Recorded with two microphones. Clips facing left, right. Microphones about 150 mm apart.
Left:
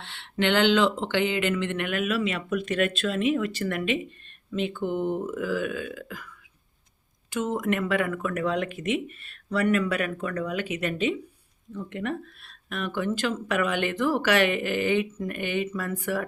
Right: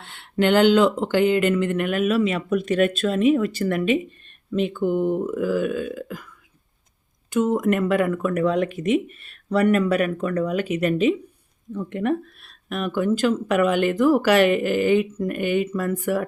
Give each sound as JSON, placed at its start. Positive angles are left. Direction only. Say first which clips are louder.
{"t": 0.0, "sound": "speech", "louder": "right 5 dB", "side_deg": -45}
{"t": 7.3, "sound": "speech", "louder": "right 7 dB", "side_deg": -45}